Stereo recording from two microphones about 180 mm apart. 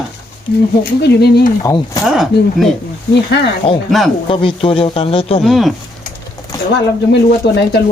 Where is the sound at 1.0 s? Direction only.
65° left (ahead or behind).